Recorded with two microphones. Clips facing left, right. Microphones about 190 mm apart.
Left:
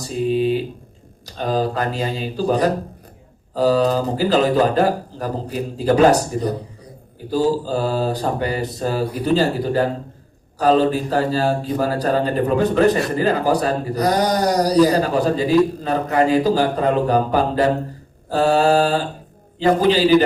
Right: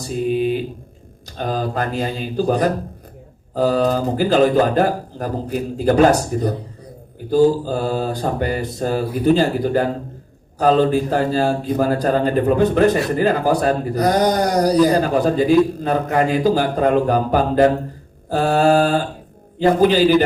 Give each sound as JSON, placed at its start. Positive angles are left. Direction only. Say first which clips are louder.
{"t": 0.0, "sound": "a sound", "louder": "even", "side_deg": -55}
{"t": 1.4, "sound": "speech", "louder": "left 1 dB", "side_deg": -55}
{"t": 18.3, "sound": "mantra", "louder": "even", "side_deg": -55}
{"t": 19.5, "sound": "speech", "louder": "right 2 dB", "side_deg": -55}